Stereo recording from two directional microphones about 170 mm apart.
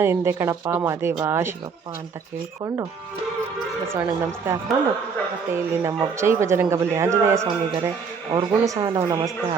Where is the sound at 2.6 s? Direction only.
20° right (ahead or behind).